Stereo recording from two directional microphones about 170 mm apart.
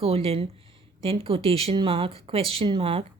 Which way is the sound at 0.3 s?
35° right (ahead or behind).